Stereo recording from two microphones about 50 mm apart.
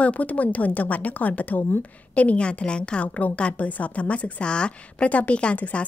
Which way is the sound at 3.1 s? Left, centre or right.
Left.